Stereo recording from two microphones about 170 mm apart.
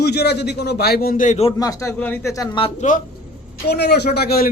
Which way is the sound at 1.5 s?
20° left (ahead or behind).